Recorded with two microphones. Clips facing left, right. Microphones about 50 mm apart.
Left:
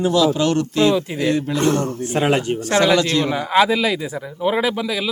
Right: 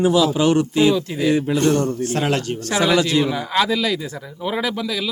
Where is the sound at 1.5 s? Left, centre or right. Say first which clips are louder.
Right 1 dB; left.